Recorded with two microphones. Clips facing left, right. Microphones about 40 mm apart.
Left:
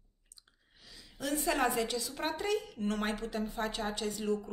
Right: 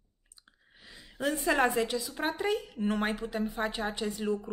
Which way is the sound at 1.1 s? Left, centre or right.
Right.